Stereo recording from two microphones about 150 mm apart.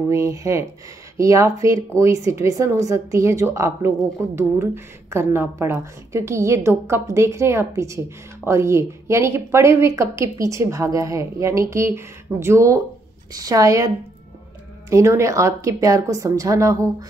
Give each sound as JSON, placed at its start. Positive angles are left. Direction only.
{"t": 0.1, "sound": "a woman's voice", "side_deg": -20}